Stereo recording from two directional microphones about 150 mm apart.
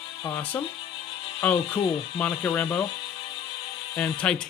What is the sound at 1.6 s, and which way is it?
Speech, 30° left (ahead or behind).